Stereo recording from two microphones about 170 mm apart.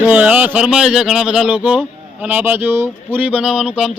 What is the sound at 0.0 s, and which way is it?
Speech, 10° right (ahead or behind).